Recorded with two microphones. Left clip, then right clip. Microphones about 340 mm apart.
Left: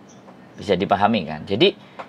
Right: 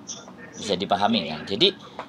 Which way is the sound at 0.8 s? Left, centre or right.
Left.